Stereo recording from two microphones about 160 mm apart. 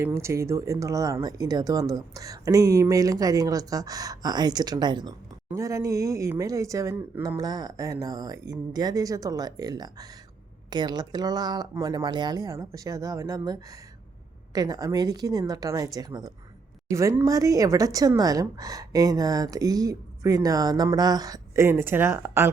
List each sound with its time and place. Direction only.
0.0 s a woman's voice: 15° right (ahead or behind)